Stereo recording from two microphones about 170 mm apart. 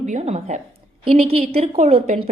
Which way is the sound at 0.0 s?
40° right (ahead or behind).